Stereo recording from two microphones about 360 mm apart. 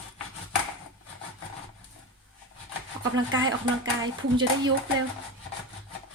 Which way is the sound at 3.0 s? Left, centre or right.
Right.